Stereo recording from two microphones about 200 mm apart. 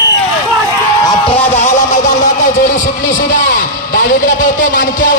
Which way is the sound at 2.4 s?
40° left (ahead or behind).